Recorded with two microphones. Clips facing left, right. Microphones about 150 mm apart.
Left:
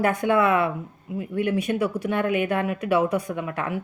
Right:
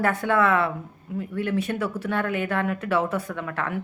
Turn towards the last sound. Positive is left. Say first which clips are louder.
# left 2 dB
turn(degrees=15)  # may be behind; listen again after turning